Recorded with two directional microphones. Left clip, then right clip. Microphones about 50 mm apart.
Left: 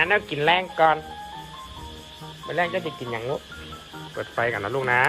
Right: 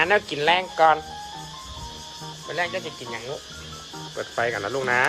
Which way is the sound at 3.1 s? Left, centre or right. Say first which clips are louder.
Left 5 dB; centre.